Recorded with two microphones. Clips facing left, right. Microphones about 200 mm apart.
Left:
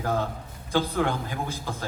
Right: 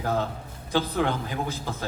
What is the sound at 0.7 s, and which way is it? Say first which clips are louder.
A man's voice: even; 15° left (ahead or behind).